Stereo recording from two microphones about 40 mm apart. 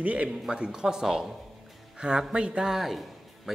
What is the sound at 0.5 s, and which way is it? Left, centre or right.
Speech, centre.